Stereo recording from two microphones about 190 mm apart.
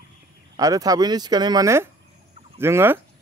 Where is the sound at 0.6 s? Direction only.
20° right (ahead or behind).